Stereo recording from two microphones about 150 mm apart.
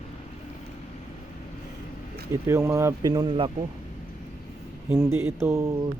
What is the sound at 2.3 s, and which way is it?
Speech, 20° right (ahead or behind).